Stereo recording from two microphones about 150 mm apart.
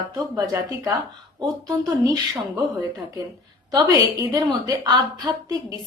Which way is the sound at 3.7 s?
25° right (ahead or behind).